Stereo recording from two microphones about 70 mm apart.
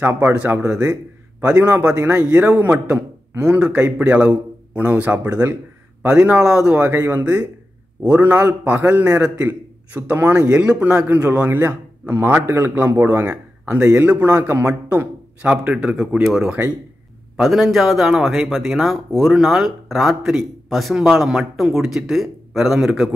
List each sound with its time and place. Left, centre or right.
0.0 s a man's voice: right
6.7 s a man's voice: right
12.9 s a man's voice: right
13.2 s speech: right
15.5 s speech: centre